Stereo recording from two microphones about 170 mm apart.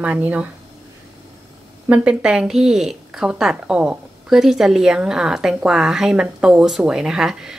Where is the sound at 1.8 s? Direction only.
10° right (ahead or behind).